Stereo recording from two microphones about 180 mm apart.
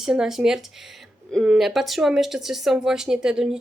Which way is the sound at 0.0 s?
Centre (ahead or behind).